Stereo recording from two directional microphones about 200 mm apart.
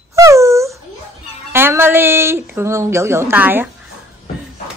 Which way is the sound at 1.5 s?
10° right (ahead or behind).